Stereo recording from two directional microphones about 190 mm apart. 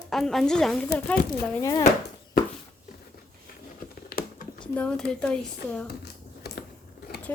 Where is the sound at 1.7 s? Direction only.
35° left (ahead or behind).